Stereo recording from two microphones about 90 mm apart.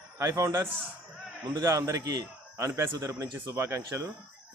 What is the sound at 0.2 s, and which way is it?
A man's voice, 35° right (ahead or behind).